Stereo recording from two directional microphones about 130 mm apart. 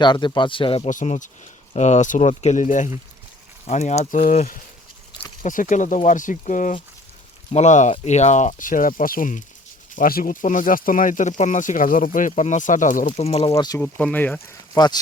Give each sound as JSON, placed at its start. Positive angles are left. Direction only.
{"t": 0.0, "sound": "speech", "side_deg": 35}
{"t": 0.9, "sound": "speech", "side_deg": 70}
{"t": 3.7, "sound": "speech", "side_deg": 60}
{"t": 5.4, "sound": "speech", "side_deg": 85}
{"t": 7.5, "sound": "speech", "side_deg": 65}
{"t": 13.5, "sound": "speech", "side_deg": 30}
{"t": 13.7, "sound": "speech", "side_deg": 10}